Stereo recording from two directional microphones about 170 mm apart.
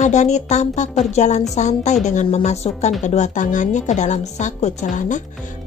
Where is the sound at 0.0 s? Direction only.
45° left (ahead or behind).